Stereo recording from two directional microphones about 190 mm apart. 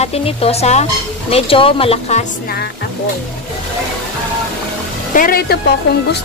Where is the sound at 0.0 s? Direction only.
30° left (ahead or behind).